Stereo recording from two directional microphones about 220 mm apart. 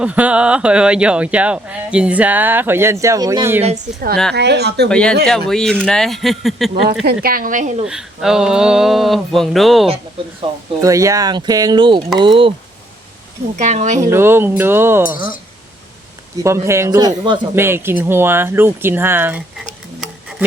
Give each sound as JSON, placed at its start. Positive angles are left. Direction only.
{"t": 0.0, "sound": "speech", "side_deg": -5}
{"t": 4.4, "sound": "speech", "side_deg": -50}
{"t": 4.9, "sound": "a sound", "side_deg": 5}
{"t": 7.0, "sound": "speech", "side_deg": -45}
{"t": 7.9, "sound": "a sound", "side_deg": 0}
{"t": 10.8, "sound": "speech", "side_deg": -15}
{"t": 13.6, "sound": "speech", "side_deg": -30}
{"t": 14.0, "sound": "speech", "side_deg": -10}
{"t": 16.4, "sound": "speech", "side_deg": -10}